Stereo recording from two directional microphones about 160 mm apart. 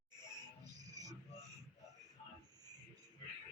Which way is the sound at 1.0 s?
20° right (ahead or behind).